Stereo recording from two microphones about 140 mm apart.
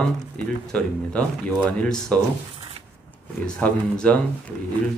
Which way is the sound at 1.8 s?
5° left (ahead or behind).